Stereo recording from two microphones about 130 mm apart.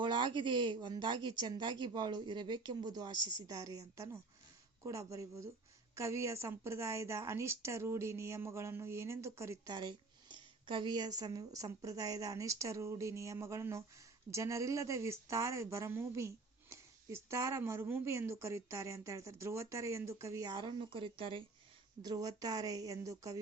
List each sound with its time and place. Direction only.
0.0 s speech: 40° right (ahead or behind); by 9.7 s 20° right (ahead or behind)
9.7 s speech: 35° right (ahead or behind)
22.0 s speech: 30° right (ahead or behind)